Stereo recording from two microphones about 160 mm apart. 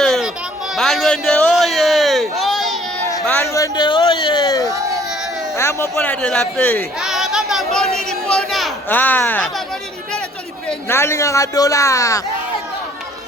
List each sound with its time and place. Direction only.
0.0 s children playing: centre (ahead or behind)
0.8 s a sound: centre (ahead or behind)
3.3 s a man's voice: 20° left (ahead or behind)
7.0 s a sound: centre (ahead or behind)
8.9 s speech: 10° left (ahead or behind)
10.8 s a man's voice: 15° left (ahead or behind)